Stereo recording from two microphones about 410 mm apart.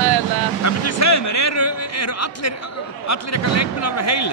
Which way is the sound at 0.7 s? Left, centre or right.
Left.